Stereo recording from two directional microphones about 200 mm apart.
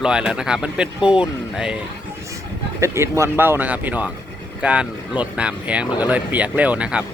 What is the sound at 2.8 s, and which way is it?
Speech, 15° right (ahead or behind).